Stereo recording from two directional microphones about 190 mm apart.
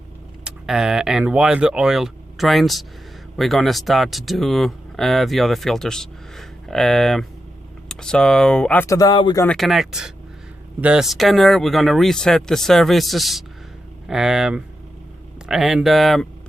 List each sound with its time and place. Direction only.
0.4 s speech: 5° right (ahead or behind); by 9.5 s 20° left (ahead or behind)
9.5 s speech: centre (ahead or behind)